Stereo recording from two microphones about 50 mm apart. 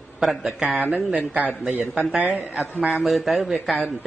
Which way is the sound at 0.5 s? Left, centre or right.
Right.